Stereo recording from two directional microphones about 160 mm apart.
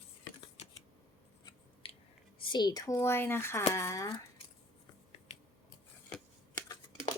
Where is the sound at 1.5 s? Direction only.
35° left (ahead or behind).